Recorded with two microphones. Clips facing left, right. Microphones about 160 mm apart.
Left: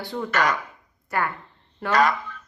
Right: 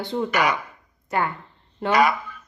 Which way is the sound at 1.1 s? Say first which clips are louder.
Right 2 dB; 20° right (ahead or behind).